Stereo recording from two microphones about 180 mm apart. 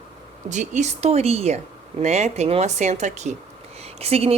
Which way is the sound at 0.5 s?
40° right (ahead or behind).